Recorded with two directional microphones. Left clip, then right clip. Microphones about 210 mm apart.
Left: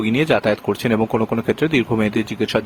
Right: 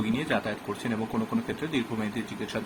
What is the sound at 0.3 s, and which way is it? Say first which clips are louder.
Speech: left 12 dB; 50° left (ahead or behind).